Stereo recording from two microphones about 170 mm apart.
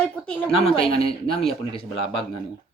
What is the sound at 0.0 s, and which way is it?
Speech, 5° left (ahead or behind).